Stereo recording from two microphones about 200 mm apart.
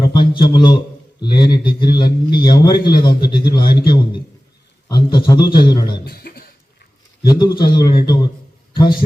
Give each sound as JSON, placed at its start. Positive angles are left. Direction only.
{"t": 0.0, "sound": "a sound", "side_deg": 20}
{"t": 1.2, "sound": "a man's voice", "side_deg": 20}
{"t": 6.1, "sound": "beatboxing", "side_deg": 50}
{"t": 7.3, "sound": "a man's voice", "side_deg": 20}